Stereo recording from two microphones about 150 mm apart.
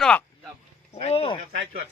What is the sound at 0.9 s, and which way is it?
Speech, 45° left (ahead or behind).